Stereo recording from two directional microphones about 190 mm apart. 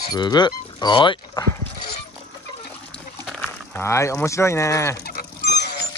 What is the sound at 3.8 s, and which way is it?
Speech, 15° left (ahead or behind).